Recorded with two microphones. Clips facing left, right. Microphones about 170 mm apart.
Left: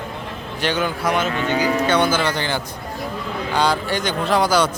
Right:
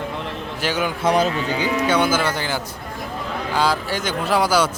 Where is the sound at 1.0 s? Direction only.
35° right (ahead or behind).